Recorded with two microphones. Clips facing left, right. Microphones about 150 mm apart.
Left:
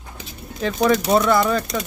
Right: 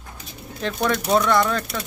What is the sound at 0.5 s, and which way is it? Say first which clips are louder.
Speech: left 5 dB; centre (ahead or behind).